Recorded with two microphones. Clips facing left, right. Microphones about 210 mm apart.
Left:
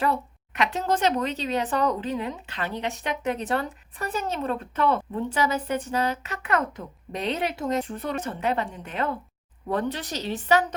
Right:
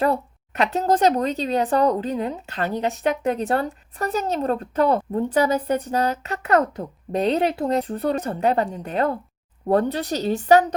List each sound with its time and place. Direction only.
0.0 s speech: 35° right (ahead or behind)